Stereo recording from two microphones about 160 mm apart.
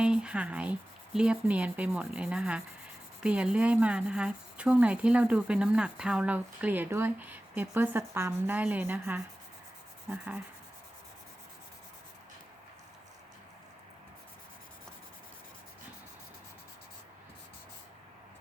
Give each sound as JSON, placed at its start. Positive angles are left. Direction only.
{"t": 0.0, "sound": "a woman's voice", "side_deg": -5}